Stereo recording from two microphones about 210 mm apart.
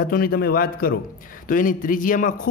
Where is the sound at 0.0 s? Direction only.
45° left (ahead or behind).